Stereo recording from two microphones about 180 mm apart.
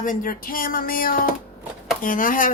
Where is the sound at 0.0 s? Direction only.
50° left (ahead or behind).